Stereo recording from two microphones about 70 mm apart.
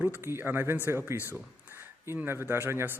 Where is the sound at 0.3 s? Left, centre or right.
Right.